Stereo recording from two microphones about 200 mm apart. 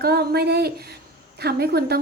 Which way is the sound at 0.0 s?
55° right (ahead or behind).